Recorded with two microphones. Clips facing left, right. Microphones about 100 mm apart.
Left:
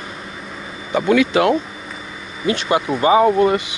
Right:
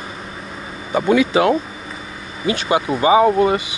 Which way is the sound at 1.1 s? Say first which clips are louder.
Even; 20° right (ahead or behind).